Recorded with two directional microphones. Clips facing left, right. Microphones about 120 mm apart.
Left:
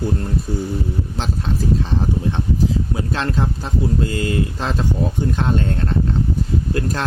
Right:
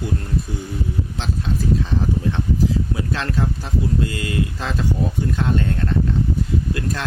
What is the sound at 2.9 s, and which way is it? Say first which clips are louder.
Speech: left 2 dB; 30° left (ahead or behind).